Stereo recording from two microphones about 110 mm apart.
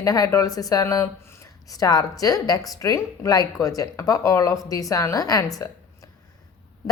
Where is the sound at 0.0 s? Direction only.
35° left (ahead or behind).